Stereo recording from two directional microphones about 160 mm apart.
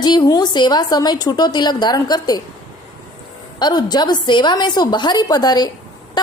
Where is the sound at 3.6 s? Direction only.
25° left (ahead or behind).